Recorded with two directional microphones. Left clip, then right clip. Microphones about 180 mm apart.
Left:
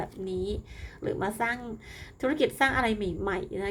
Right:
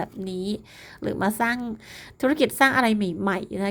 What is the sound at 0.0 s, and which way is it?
A woman's voice, 40° right (ahead or behind).